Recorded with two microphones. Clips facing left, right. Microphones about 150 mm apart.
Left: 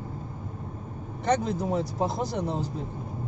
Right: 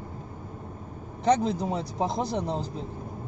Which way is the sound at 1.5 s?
5° left (ahead or behind).